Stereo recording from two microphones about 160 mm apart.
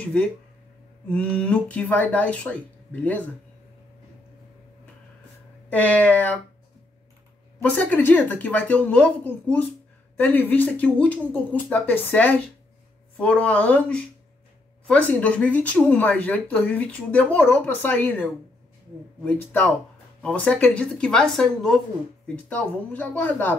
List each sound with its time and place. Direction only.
0.0 s speech: 10° left (ahead or behind)
5.7 s speech: 10° left (ahead or behind)
7.6 s speech: 10° left (ahead or behind)